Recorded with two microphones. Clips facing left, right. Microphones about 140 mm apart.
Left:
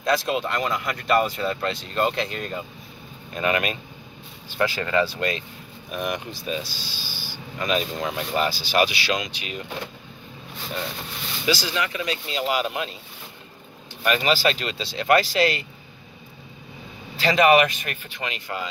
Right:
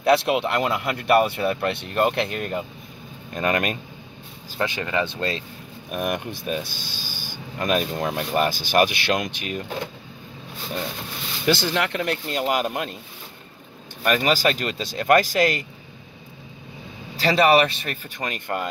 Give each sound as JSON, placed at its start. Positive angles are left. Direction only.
{"t": 0.0, "sound": "speech", "side_deg": -65}
{"t": 3.3, "sound": "a man's voice", "side_deg": -40}
{"t": 4.6, "sound": "speech", "side_deg": -20}
{"t": 5.9, "sound": "speech", "side_deg": -50}
{"t": 11.4, "sound": "speech", "side_deg": -55}
{"t": 14.0, "sound": "speech", "side_deg": -45}
{"t": 17.2, "sound": "a man's voice", "side_deg": -35}
{"t": 18.1, "sound": "speech", "side_deg": -45}